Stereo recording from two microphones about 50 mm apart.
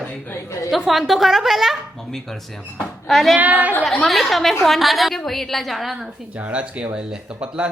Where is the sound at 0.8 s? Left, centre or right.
Centre.